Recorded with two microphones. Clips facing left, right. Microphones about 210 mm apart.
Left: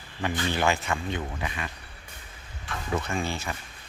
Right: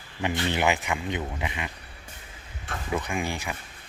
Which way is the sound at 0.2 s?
20° right (ahead or behind).